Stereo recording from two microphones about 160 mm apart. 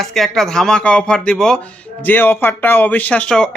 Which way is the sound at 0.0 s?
Centre (ahead or behind).